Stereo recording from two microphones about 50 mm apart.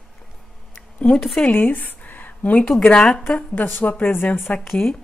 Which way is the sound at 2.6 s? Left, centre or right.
Centre.